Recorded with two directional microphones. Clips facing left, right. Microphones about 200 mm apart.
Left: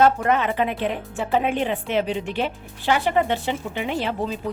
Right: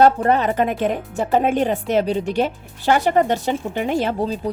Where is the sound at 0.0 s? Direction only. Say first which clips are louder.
Right 3 dB; 35° right (ahead or behind).